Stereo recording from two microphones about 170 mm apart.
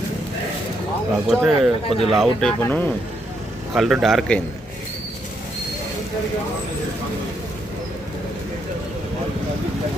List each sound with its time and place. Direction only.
1.3 s speech: centre (ahead or behind)